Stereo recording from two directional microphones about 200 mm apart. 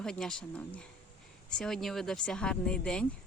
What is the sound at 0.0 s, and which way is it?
Speech, 5° left (ahead or behind).